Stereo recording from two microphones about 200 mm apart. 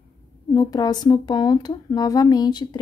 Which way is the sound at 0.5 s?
20° left (ahead or behind).